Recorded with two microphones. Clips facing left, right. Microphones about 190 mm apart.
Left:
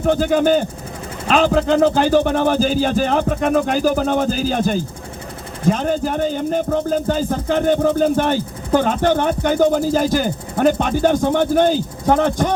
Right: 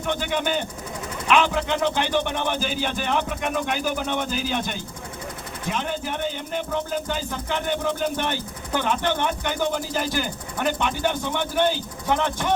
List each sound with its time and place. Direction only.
0.0 s speech: 40° left (ahead or behind)